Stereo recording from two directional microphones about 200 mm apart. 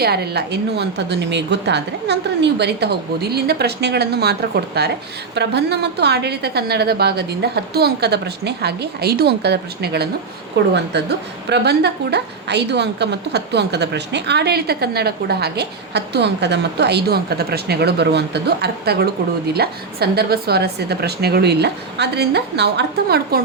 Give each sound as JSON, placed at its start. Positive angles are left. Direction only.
{"t": 0.0, "sound": "a woman's voice", "side_deg": -55}